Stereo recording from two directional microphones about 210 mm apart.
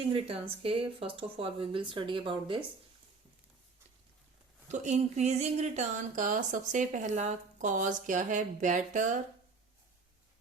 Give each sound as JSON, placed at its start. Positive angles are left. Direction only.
{"t": 0.1, "sound": "speech", "side_deg": -25}
{"t": 4.7, "sound": "speech", "side_deg": -35}